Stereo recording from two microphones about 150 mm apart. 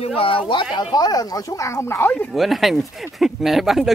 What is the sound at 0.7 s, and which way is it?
Speech, 25° left (ahead or behind).